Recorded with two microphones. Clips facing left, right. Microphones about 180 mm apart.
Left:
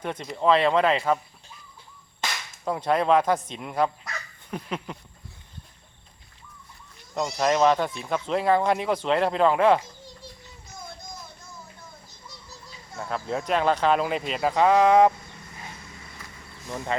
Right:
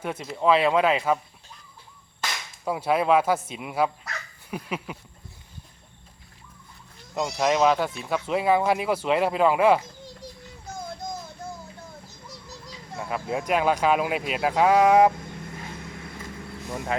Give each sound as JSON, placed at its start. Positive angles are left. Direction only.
{"t": 0.0, "sound": "speech", "side_deg": -5}
{"t": 2.6, "sound": "speech", "side_deg": -5}
{"t": 7.1, "sound": "speech", "side_deg": -5}
{"t": 13.0, "sound": "speech", "side_deg": -10}
{"t": 15.4, "sound": "vehicle", "side_deg": -65}
{"t": 16.7, "sound": "speech", "side_deg": -5}